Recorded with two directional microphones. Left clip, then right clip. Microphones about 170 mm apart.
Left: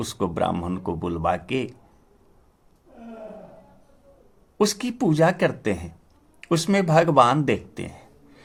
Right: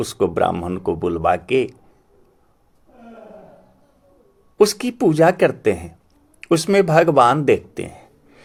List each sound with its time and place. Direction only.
0.0 s speech: 35° right (ahead or behind)
4.5 s speech: 35° right (ahead or behind)